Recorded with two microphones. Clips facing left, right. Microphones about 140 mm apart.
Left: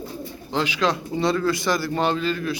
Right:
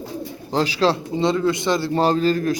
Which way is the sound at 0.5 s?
35° right (ahead or behind).